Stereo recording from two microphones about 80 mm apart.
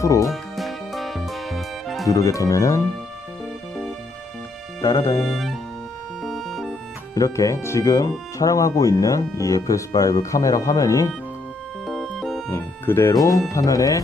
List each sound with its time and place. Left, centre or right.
0.0 s speech: left
0.3 s music: centre
2.0 s speech: left
4.8 s speech: left
6.2 s music: centre
7.2 s speech: left
11.8 s music: centre
12.4 s music: left
13.1 s speech: left